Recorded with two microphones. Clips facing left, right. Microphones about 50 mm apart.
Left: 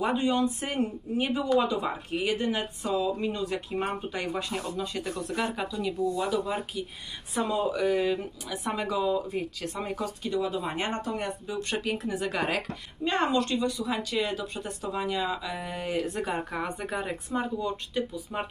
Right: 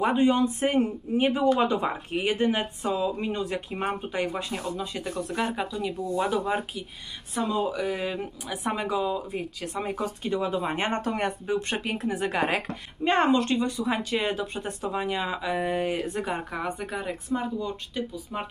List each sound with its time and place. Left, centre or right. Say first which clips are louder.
0.0 s speech: right 4 dB; right
6.1 s speech: right 3 dB; right
7.3 s speech: even; centre
10.2 s speech: right 2 dB; right
11.0 s speech: right 4 dB; right
11.4 s speech: right 3 dB; right
16.1 s a woman's voice: right 1 dB; centre